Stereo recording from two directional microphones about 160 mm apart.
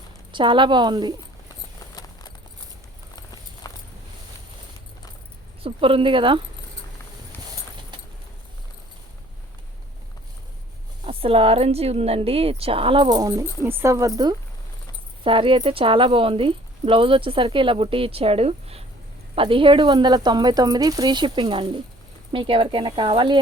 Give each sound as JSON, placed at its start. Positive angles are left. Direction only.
{"t": 0.3, "sound": "speech", "side_deg": -30}
{"t": 3.6, "sound": "keys jangling", "side_deg": 25}
{"t": 5.6, "sound": "speech", "side_deg": -35}
{"t": 7.3, "sound": "clip-clop", "side_deg": 15}
{"t": 11.0, "sound": "speech", "side_deg": -35}